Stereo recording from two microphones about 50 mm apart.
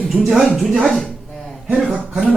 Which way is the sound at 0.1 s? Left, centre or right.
Centre.